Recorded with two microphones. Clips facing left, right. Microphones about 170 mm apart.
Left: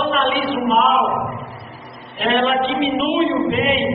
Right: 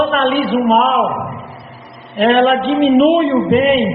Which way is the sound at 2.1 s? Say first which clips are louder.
Right 6 dB; 55° right (ahead or behind).